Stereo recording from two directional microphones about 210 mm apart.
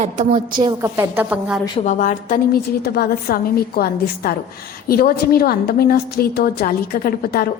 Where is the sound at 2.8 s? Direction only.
50° left (ahead or behind).